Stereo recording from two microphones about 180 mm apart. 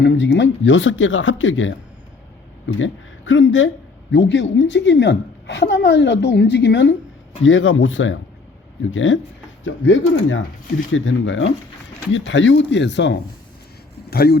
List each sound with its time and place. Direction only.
0.0 s speech: 75° left (ahead or behind); by 4.4 s 90° left
4.5 s a woman's voice: 80° left
7.4 s speech: 90° left
14.1 s speech: 60° left (ahead or behind)